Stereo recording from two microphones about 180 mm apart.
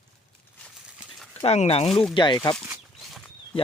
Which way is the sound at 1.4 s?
35° left (ahead or behind).